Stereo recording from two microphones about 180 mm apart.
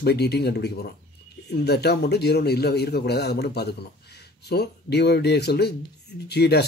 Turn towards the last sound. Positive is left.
turn(degrees=65)  # may be behind; listen again after turning